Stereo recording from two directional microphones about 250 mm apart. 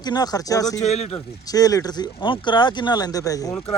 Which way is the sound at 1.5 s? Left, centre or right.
Centre.